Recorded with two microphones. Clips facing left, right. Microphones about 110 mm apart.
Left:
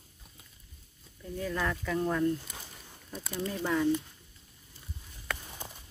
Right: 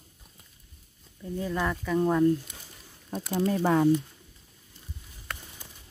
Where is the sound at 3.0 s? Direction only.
50° right (ahead or behind).